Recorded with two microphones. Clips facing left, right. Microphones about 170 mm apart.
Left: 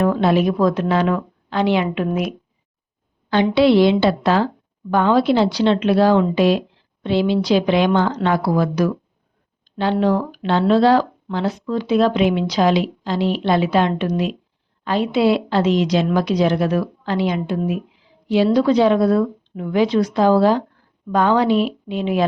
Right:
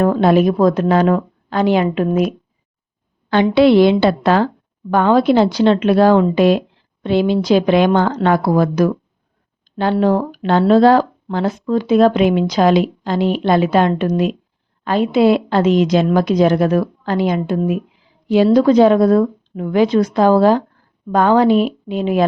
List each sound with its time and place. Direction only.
0.0 s speech: 45° right (ahead or behind)
3.2 s speech: 55° right (ahead or behind)
10.0 s speech: 45° right (ahead or behind)